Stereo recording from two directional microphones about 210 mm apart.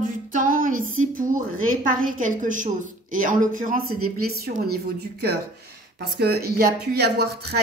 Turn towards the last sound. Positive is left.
turn(degrees=-50)  # may be behind; listen again after turning